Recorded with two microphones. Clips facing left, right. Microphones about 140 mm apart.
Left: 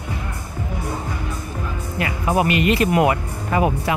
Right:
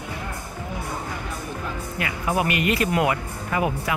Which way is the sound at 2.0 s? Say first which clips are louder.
Left 5 dB; 30° left (ahead or behind).